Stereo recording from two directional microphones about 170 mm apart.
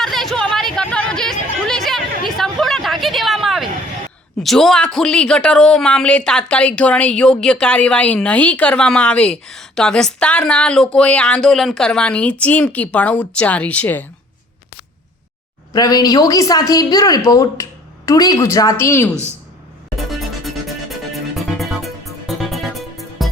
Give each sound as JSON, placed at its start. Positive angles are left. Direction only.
{"t": 0.0, "sound": "a sound", "side_deg": 0}
{"t": 4.4, "sound": "speech", "side_deg": 0}
{"t": 15.7, "sound": "a woman's voice", "side_deg": 20}
{"t": 20.0, "sound": "music", "side_deg": 0}